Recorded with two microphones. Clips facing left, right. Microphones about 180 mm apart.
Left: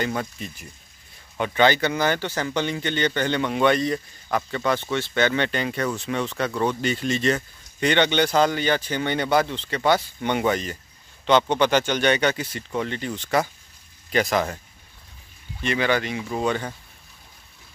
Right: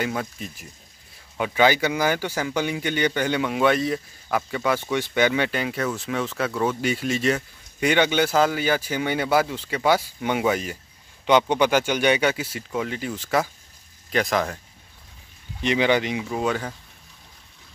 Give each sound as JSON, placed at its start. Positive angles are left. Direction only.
{"t": 0.0, "sound": "speech", "side_deg": -5}
{"t": 15.6, "sound": "speech", "side_deg": -15}
{"t": 16.3, "sound": "speech", "side_deg": -5}